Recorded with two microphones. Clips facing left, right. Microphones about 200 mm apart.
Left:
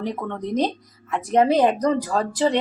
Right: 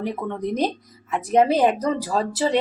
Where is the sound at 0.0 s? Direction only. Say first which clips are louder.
Right 1 dB; 10° right (ahead or behind).